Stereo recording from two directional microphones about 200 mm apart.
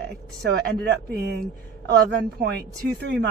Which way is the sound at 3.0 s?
55° right (ahead or behind).